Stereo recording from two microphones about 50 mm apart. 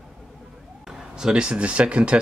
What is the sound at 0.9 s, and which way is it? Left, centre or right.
Speech, centre.